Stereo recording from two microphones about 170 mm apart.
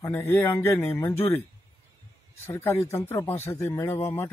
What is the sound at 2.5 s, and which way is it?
A man's voice, 15° left (ahead or behind).